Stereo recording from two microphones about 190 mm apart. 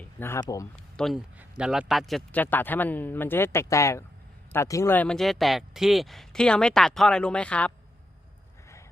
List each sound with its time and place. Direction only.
0.0 s speech: 10° left (ahead or behind)
0.9 s speech: centre (ahead or behind)